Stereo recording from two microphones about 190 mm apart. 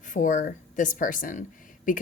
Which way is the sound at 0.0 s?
40° left (ahead or behind).